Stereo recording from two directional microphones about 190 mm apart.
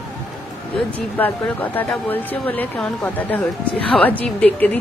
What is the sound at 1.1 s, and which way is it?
Speech, 10° left (ahead or behind).